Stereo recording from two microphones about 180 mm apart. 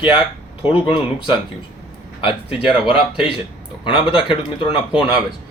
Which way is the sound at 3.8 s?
25° left (ahead or behind).